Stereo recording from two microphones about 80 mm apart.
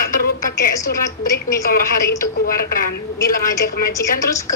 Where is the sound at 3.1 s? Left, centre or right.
Left.